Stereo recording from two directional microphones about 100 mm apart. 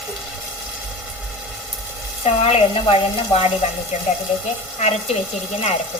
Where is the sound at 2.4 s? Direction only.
70° left (ahead or behind).